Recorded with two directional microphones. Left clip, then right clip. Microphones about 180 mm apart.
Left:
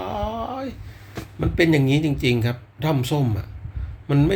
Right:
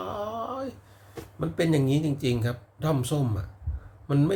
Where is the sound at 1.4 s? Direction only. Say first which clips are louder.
Left 7 dB; 15° right (ahead or behind).